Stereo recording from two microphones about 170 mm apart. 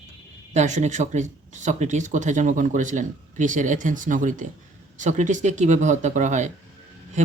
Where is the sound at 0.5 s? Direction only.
45° right (ahead or behind).